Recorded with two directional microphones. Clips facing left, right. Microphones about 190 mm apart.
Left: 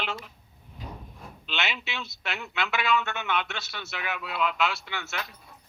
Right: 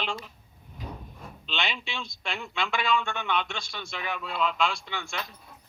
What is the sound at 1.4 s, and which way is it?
A man's voice, 5° left (ahead or behind).